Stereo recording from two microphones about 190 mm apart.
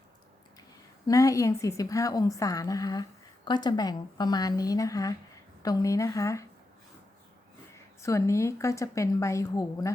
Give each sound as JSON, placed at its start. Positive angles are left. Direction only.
{"t": 1.0, "sound": "a woman's voice", "side_deg": 20}
{"t": 8.0, "sound": "a woman's voice", "side_deg": 15}